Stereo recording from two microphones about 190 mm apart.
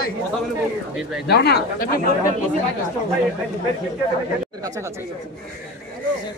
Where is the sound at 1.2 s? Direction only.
60° left (ahead or behind).